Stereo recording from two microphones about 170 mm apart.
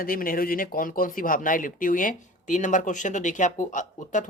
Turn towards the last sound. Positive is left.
turn(degrees=45)  # may be behind; listen again after turning